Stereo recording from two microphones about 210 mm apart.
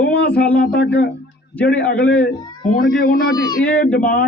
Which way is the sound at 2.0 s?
50° left (ahead or behind).